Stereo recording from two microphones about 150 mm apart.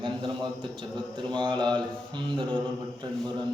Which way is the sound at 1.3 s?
30° right (ahead or behind).